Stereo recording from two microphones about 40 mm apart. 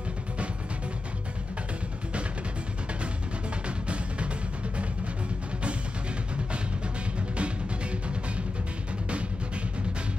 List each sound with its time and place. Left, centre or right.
3.6 s music: right
7.3 s music: right